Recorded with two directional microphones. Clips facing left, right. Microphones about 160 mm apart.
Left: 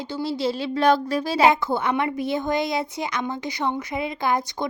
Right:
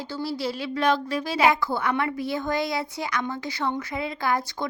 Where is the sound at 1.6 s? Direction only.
20° left (ahead or behind).